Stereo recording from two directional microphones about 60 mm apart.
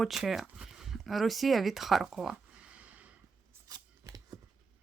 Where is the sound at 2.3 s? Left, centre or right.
Centre.